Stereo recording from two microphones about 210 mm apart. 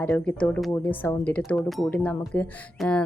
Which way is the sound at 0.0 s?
5° left (ahead or behind).